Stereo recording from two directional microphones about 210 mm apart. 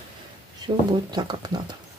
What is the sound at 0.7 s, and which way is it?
Speech, 20° right (ahead or behind).